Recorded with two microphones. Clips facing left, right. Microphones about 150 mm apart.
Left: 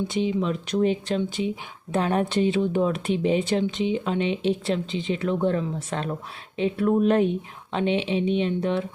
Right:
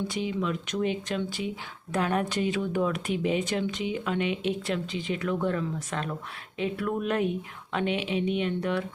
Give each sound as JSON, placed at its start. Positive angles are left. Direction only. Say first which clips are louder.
{"t": 0.1, "sound": "speech", "louder": "left 5 dB", "side_deg": 25}